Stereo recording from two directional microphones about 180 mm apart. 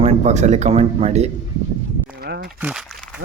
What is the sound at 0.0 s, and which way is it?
Speech, 40° right (ahead or behind).